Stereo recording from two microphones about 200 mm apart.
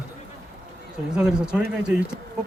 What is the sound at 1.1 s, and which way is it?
Speech, 5° right (ahead or behind).